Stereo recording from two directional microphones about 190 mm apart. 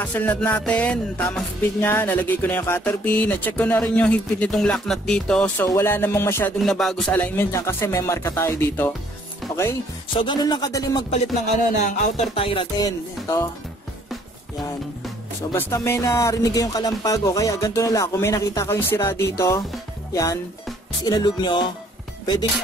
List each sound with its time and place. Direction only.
0.0 s music: 10° left (ahead or behind)
6.6 s music: centre (ahead or behind)
10.1 s music: 25° left (ahead or behind)
11.8 s music: 35° left (ahead or behind)
15.5 s music: 15° left (ahead or behind)
20.1 s speech: 20° left (ahead or behind)
21.0 s music: 20° left (ahead or behind)
22.2 s speech: 20° left (ahead or behind)